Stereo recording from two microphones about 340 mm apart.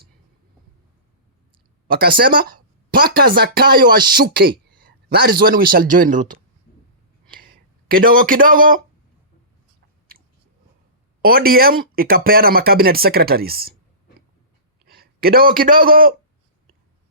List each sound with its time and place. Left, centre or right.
1.9 s a man's voice: right
11.2 s speech: right
14.8 s a man's voice: right